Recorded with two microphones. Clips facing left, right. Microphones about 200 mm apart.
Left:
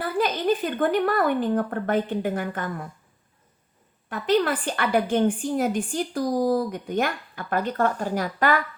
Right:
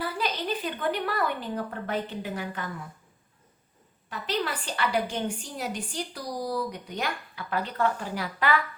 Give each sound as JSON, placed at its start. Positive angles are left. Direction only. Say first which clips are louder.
{"t": 0.0, "sound": "speech", "louder": "left 7 dB", "side_deg": 50}
{"t": 4.1, "sound": "a woman's voice", "louder": "left 9 dB", "side_deg": 50}